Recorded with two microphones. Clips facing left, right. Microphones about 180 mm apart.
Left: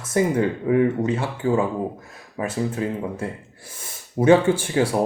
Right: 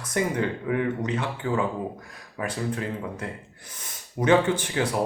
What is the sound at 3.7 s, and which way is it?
Gasp, 25° left (ahead or behind).